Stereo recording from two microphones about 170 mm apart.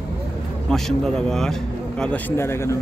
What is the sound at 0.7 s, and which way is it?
A man's voice, centre (ahead or behind).